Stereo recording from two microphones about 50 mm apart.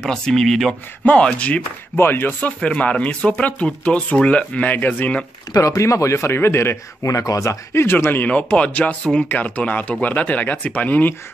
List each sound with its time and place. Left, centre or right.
0.0 s speech: centre
1.0 s speech: left
2.0 s speech: left
2.4 s speech: left
5.6 s a man's voice: left
7.8 s speech: left
8.5 s speech: left